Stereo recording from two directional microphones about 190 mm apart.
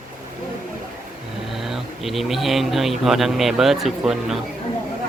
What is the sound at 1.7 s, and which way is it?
Speech, centre (ahead or behind).